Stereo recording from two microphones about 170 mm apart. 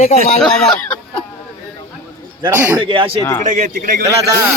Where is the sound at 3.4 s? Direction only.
50° right (ahead or behind).